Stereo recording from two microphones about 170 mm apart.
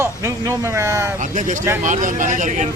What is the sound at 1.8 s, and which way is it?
Speech, 50° right (ahead or behind).